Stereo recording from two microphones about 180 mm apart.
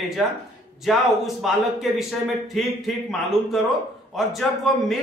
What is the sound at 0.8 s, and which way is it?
Speech, centre (ahead or behind).